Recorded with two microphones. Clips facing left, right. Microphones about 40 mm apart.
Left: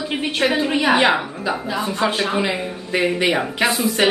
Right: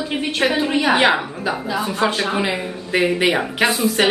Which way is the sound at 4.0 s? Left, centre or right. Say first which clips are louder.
Even; centre.